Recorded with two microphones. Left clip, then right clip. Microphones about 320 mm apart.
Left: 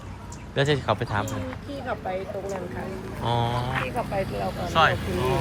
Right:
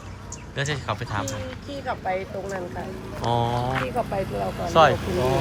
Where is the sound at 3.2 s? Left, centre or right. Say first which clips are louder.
Right 2 dB; centre.